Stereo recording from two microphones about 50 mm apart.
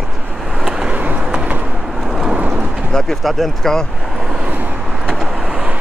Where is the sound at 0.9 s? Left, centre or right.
Right.